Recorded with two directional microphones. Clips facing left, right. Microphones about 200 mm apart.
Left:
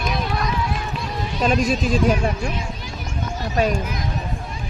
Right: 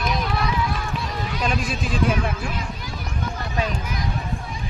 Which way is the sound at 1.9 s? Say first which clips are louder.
Left 4 dB; 40° left (ahead or behind).